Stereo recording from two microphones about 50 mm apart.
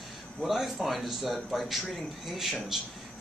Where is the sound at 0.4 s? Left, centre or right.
Centre.